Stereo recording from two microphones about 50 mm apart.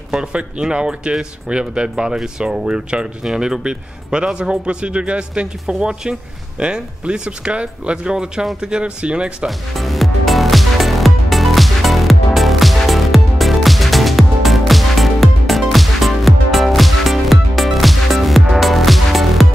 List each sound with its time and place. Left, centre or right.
0.1 s speech: centre
9.5 s music: centre